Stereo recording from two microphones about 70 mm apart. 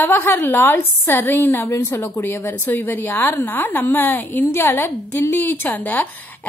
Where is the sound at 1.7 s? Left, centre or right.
Left.